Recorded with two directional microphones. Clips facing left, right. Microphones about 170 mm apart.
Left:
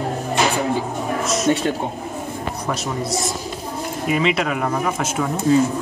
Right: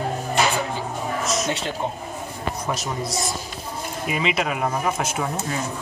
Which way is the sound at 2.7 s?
Centre (ahead or behind).